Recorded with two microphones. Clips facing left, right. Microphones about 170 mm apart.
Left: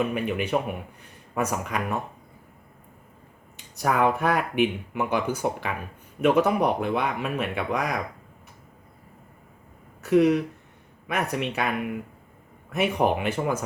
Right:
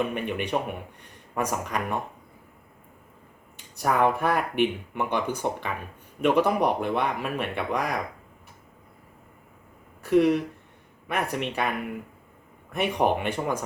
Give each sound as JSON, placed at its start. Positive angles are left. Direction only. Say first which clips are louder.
{"t": 0.0, "sound": "speech", "louder": "left 2 dB", "side_deg": 5}
{"t": 3.8, "sound": "speech", "louder": "even", "side_deg": 0}
{"t": 10.0, "sound": "speech", "louder": "left 1 dB", "side_deg": 0}
{"t": 12.7, "sound": "speech", "louder": "left 1 dB", "side_deg": 5}